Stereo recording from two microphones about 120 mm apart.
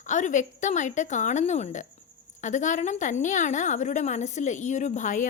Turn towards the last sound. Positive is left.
turn(degrees=90)